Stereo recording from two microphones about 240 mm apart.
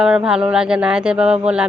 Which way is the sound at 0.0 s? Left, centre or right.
Centre.